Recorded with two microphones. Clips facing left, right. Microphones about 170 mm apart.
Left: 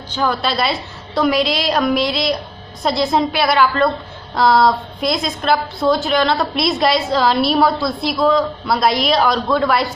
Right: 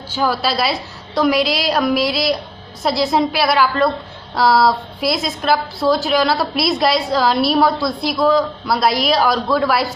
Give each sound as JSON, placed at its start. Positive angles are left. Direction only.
{"t": 0.1, "sound": "a woman's voice", "side_deg": -5}